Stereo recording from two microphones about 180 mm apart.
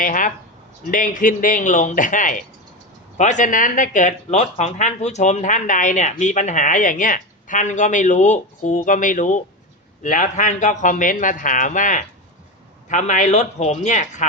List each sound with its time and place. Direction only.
0.0 s speech: 45° left (ahead or behind)